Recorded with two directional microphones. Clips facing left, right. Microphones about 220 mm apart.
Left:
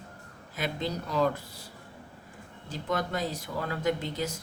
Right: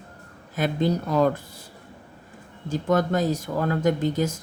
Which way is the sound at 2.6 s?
45° right (ahead or behind).